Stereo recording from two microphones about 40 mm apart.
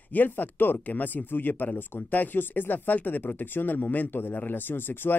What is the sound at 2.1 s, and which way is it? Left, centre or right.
Speech, left.